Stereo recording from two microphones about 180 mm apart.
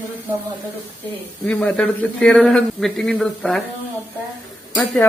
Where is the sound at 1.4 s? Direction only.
5° left (ahead or behind).